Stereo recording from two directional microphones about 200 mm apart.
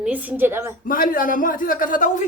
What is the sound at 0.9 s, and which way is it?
A man's voice, 45° left (ahead or behind).